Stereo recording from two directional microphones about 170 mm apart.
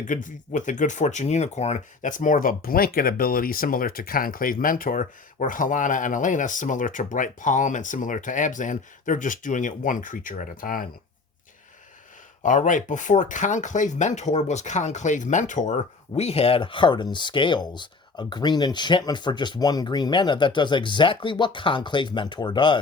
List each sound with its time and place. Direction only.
0.1 s speech: 50° left (ahead or behind)
12.4 s speech: 50° left (ahead or behind); by 22.8 s 30° left (ahead or behind)